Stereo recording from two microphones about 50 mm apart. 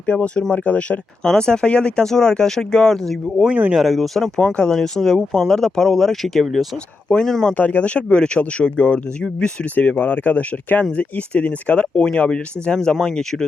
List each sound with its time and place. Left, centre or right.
0.1 s speech: left
1.2 s speech: centre
4.4 s speech: centre
7.1 s speech: centre
7.5 s speech: left
9.7 s speech: left; by 13.2 s centre